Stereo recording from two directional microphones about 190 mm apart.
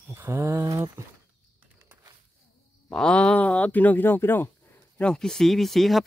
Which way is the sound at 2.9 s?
5° left (ahead or behind).